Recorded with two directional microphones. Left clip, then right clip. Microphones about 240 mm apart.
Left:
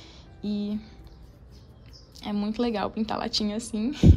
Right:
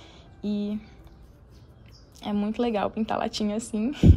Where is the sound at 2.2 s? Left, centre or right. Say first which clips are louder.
Right 1 dB; centre.